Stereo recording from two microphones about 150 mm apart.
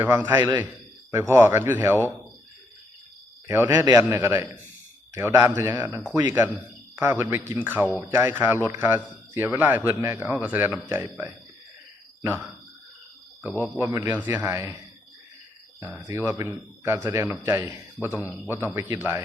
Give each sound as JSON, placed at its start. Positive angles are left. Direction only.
{"t": 0.0, "sound": "a man's voice", "side_deg": -15}
{"t": 3.4, "sound": "a man's voice", "side_deg": -20}
{"t": 13.7, "sound": "a man's voice", "side_deg": -20}
{"t": 15.9, "sound": "a man's voice", "side_deg": -15}